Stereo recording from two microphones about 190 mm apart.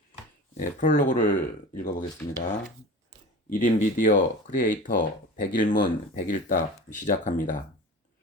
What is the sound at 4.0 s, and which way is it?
Speech, 45° left (ahead or behind).